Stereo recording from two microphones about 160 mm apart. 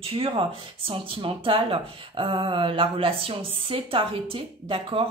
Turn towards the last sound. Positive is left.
turn(degrees=-35)  # may be behind; listen again after turning